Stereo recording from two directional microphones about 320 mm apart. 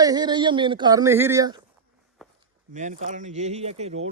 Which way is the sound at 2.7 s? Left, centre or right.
Right.